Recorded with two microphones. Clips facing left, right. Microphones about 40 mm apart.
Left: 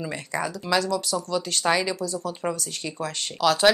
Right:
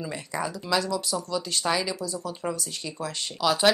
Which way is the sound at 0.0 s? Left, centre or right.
Centre.